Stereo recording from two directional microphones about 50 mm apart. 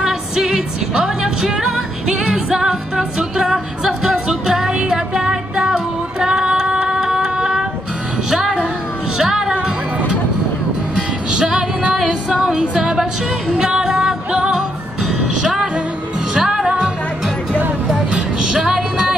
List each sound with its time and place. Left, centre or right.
0.0 s music: centre
11.0 s music: centre
11.9 s music: centre
17.8 s vehicle: centre
18.6 s music: centre